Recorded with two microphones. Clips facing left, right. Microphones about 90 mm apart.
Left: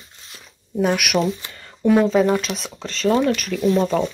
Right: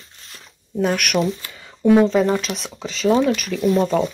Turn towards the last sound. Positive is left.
turn(degrees=0)  # may be behind; listen again after turning